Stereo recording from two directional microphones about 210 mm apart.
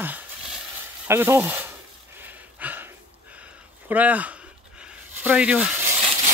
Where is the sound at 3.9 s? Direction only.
5° right (ahead or behind).